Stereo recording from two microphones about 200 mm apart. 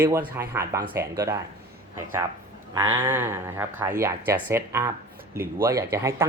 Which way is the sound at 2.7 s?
10° right (ahead or behind).